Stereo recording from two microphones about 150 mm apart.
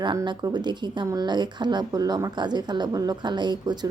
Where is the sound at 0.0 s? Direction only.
30° right (ahead or behind).